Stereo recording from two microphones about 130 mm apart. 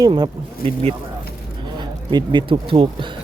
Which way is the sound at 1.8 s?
35° right (ahead or behind).